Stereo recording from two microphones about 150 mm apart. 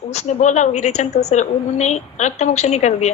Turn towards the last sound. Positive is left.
turn(degrees=45)  # may be behind; listen again after turning